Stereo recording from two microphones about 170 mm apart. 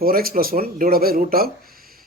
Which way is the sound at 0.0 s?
60° right (ahead or behind).